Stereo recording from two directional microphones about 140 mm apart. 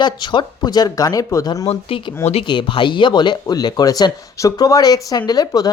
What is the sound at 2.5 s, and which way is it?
Speech, 35° left (ahead or behind).